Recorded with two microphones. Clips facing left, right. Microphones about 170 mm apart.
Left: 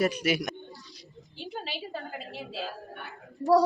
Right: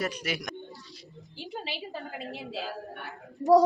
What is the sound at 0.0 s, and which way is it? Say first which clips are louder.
Speech: left 6 dB; 10° left (ahead or behind).